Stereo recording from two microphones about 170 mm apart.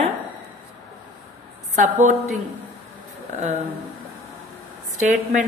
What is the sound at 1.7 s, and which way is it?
Mantra, 50° right (ahead or behind).